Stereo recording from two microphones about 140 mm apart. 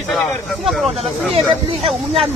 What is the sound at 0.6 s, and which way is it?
Speech, centre (ahead or behind).